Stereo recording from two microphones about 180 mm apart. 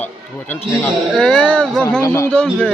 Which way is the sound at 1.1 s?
5° left (ahead or behind).